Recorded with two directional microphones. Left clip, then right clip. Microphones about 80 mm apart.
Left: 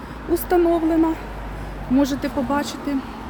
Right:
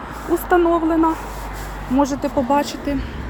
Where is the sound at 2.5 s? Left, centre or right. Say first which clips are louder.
Right 7 dB; centre.